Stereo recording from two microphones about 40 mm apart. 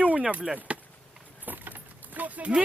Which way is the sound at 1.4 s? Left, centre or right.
Right.